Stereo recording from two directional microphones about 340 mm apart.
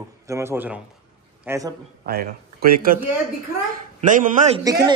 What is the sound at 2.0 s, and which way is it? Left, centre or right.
A man's voice, right.